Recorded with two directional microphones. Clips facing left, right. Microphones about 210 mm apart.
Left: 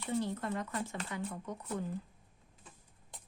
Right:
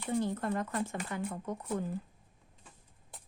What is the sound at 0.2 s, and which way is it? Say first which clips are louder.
Speech: right 3 dB; 50° right (ahead or behind).